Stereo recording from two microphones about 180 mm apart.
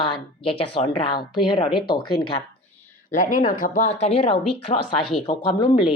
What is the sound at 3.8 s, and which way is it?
Speech, 35° left (ahead or behind).